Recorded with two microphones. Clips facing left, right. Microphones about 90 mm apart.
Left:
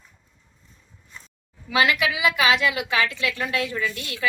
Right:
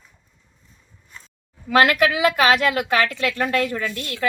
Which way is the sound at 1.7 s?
55° right (ahead or behind).